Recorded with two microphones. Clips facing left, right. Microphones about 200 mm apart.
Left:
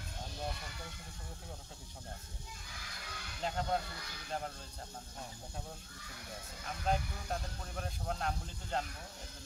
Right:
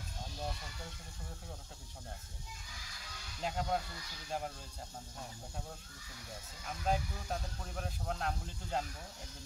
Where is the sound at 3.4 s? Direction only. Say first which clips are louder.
Even; 5° right (ahead or behind).